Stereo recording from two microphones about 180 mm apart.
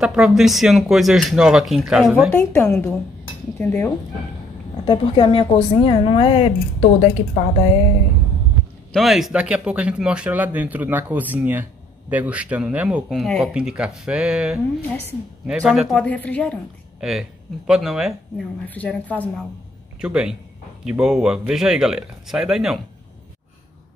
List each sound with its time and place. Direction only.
0.0 s speech: centre (ahead or behind)
2.3 s a woman's voice: 10° left (ahead or behind)
4.8 s a woman's voice: 30° left (ahead or behind)
8.9 s speech: centre (ahead or behind)
16.0 s a woman's voice: 10° left (ahead or behind)
17.0 s speech: 5° right (ahead or behind)
18.7 s a woman's voice: 10° left (ahead or behind)
20.0 s speech: 5° right (ahead or behind)